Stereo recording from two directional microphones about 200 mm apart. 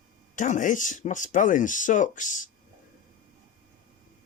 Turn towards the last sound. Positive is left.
turn(degrees=40)  # may be behind; listen again after turning